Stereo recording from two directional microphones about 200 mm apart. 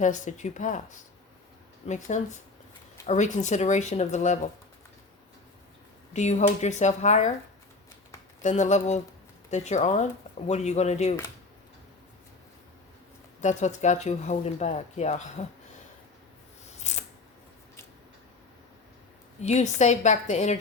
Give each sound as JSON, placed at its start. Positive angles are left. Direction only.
{"t": 0.0, "sound": "speech", "side_deg": 35}
{"t": 6.1, "sound": "speech", "side_deg": 35}
{"t": 8.4, "sound": "speech", "side_deg": 35}
{"t": 13.4, "sound": "speech", "side_deg": 35}
{"t": 16.9, "sound": "mechanisms", "side_deg": 35}
{"t": 19.4, "sound": "speech", "side_deg": 35}